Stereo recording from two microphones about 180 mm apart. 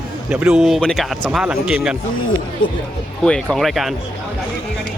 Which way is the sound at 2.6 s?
90° left.